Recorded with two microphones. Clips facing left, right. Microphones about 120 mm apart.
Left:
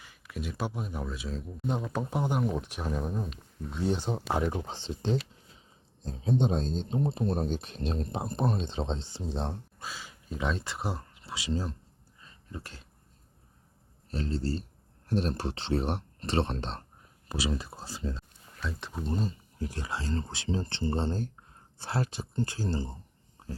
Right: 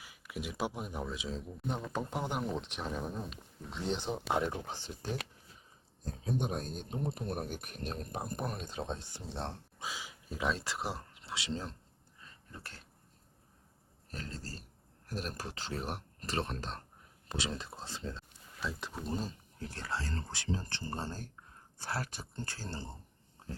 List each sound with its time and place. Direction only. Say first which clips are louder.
0.0 s speech: left 3 dB; 5° right (ahead or behind)
1.6 s speech: left 6 dB; 15° left (ahead or behind)
1.9 s speech: left 4 dB; 5° left (ahead or behind)
4.6 s speech: left 7 dB; 20° left (ahead or behind)
9.8 s a sound: right 2 dB; 15° right (ahead or behind)
10.3 s speech: left 2 dB; centre (ahead or behind)
12.5 s speech: left 7 dB; 15° left (ahead or behind)
14.1 s speech: left 13 dB; 25° left (ahead or behind)
17.2 s speech: left 6 dB; 5° left (ahead or behind)
18.6 s speech: left 3 dB; centre (ahead or behind)
19.5 s speech: left 2 dB; 10° left (ahead or behind)